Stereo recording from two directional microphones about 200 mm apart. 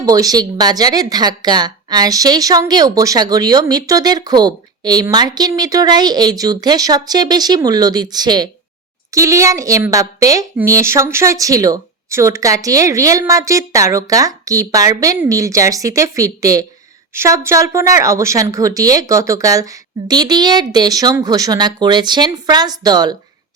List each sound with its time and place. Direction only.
0.0 s a woman's voice: 20° right (ahead or behind)